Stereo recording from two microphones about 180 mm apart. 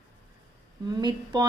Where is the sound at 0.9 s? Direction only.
20° right (ahead or behind).